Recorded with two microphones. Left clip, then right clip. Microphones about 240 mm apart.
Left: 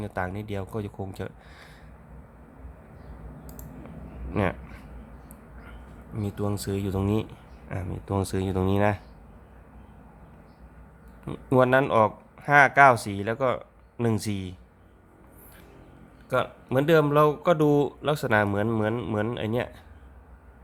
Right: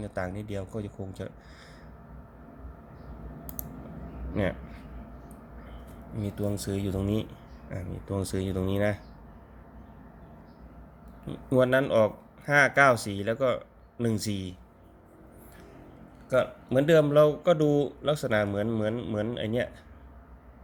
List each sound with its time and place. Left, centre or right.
0.0 s a man's voice: centre
6.1 s speech: left
11.3 s speech: left
16.3 s a man's voice: centre